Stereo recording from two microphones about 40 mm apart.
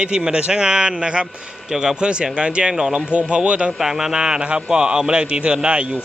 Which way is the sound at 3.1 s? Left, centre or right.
Right.